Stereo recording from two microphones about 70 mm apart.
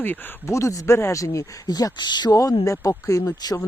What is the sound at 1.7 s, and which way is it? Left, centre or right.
Speech, left.